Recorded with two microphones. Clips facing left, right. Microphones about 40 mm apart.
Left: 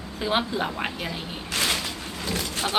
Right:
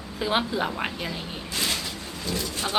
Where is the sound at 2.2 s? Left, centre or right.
Left.